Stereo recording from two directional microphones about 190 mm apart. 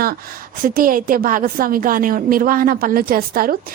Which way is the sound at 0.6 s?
50° right (ahead or behind).